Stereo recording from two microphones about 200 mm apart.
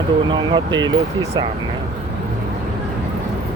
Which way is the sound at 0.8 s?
20° right (ahead or behind).